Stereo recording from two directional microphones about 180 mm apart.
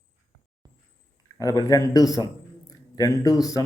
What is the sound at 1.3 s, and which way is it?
A man's voice, 20° left (ahead or behind).